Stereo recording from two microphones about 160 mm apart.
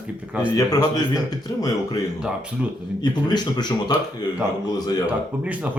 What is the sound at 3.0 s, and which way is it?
Speech, 25° left (ahead or behind).